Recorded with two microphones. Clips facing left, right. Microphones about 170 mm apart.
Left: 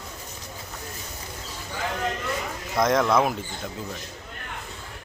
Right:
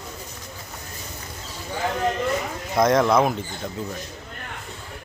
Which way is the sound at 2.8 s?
Centre (ahead or behind).